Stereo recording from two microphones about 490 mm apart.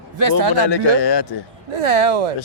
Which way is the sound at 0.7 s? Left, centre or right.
Left.